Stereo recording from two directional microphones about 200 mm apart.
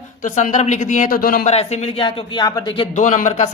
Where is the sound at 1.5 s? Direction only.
30° left (ahead or behind).